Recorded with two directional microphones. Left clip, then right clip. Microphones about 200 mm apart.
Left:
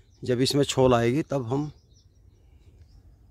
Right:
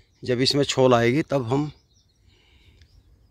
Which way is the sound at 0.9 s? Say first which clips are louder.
Right 3 dB; centre (ahead or behind).